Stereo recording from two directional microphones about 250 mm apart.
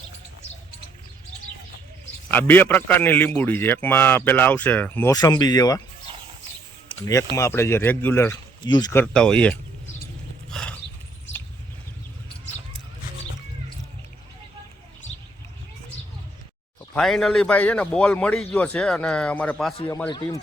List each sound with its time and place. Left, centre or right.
2.3 s a man's voice: centre
6.8 s a sound: centre
7.3 s a man's voice: centre
10.5 s a sound: centre
16.9 s a man's voice: centre
19.7 s a man's voice: centre